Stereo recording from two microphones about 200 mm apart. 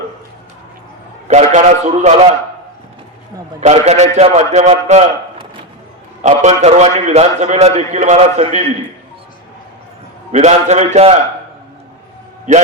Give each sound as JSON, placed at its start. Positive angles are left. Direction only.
{"t": 1.3, "sound": "a man's voice", "side_deg": -35}
{"t": 3.6, "sound": "a man's voice", "side_deg": -35}
{"t": 10.3, "sound": "a man's voice", "side_deg": -35}